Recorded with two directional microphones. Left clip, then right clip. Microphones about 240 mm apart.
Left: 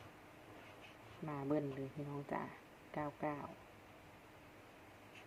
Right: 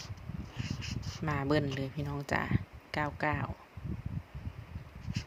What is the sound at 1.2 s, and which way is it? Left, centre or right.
Speech, right.